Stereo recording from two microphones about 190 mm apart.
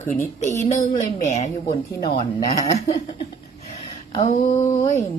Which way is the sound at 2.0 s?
25° left (ahead or behind).